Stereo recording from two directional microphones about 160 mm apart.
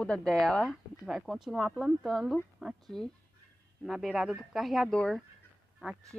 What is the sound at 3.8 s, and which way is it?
A woman's voice, centre (ahead or behind).